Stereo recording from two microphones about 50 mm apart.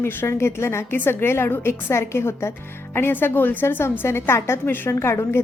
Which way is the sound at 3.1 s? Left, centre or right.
Left.